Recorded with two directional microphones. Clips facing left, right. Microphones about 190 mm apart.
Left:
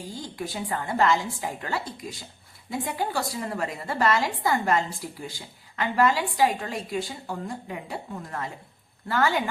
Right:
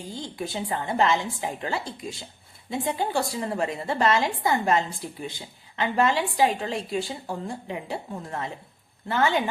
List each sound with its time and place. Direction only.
0.1 s a woman's voice: 25° right (ahead or behind)